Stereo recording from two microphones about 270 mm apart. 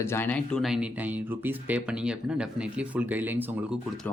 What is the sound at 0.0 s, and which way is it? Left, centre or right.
Speech, centre.